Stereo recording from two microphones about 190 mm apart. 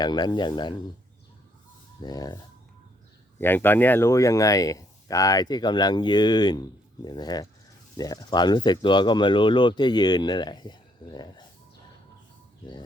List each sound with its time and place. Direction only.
0.0 s speech: 20° left (ahead or behind)
2.0 s speech: 20° left (ahead or behind)